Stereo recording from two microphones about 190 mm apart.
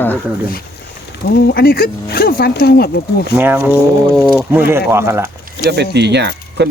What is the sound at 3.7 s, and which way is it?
Speech, 10° left (ahead or behind).